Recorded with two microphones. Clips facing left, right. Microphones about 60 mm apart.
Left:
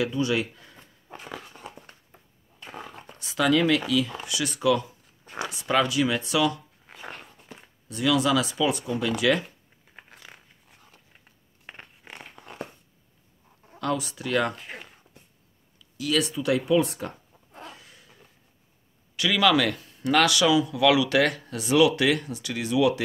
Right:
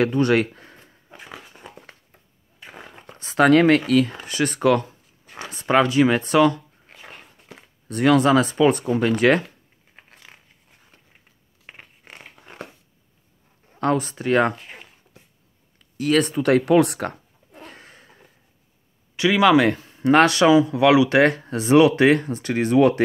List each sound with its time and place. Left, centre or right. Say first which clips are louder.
0.0 s speech: right 7 dB; right
3.2 s speech: right 7 dB; right
6.9 s dog: left 3 dB; centre
7.9 s speech: right 6 dB; right
11.7 s a sound: even; centre
13.7 s speech: right 6 dB; right
14.6 s speech: left 1 dB; centre
15.8 s speech: right 6 dB; right
17.6 s a sound: right 2 dB; right
19.1 s speech: right 6 dB; right